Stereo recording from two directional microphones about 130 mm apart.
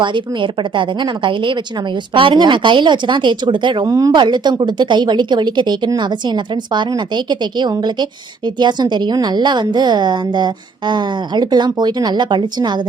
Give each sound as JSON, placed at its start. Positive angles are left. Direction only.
{"t": 0.0, "sound": "a woman's voice", "side_deg": -40}
{"t": 3.8, "sound": "a woman's voice", "side_deg": -25}